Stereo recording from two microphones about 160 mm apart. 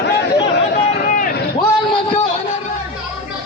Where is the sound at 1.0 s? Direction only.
60° left (ahead or behind).